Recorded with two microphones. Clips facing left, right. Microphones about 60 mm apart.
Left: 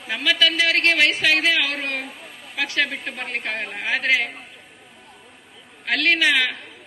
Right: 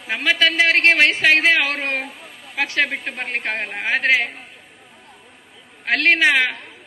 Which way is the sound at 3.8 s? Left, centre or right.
Right.